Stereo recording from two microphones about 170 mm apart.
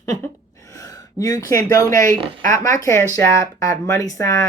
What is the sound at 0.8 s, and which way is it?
Speech, 20° left (ahead or behind).